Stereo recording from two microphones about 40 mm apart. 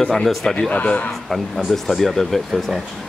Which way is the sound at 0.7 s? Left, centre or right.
Left.